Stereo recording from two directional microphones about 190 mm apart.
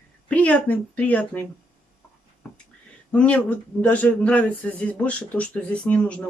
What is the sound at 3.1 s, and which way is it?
Speech, 5° left (ahead or behind).